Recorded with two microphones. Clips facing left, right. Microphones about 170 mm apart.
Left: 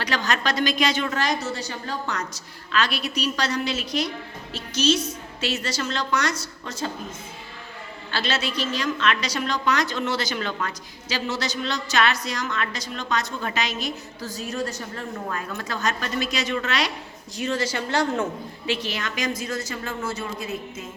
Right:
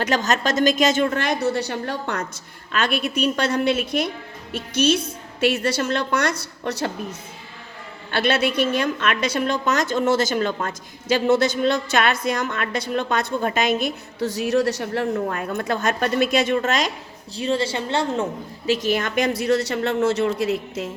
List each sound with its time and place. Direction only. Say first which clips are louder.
0.0 s a woman's voice: right 4 dB; 45° right (ahead or behind); by 6.9 s 65° right (ahead or behind)
8.1 s a woman's voice: right 7 dB; 55° right (ahead or behind)
17.3 s a woman's voice: right 3 dB; 30° right (ahead or behind); by 20.9 s 75° right (ahead or behind)